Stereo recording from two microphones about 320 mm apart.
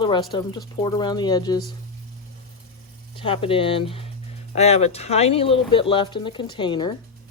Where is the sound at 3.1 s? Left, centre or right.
Centre.